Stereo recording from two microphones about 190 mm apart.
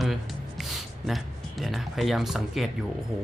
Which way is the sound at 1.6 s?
Centre (ahead or behind).